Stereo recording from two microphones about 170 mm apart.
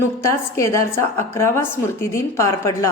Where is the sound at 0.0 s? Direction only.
15° left (ahead or behind).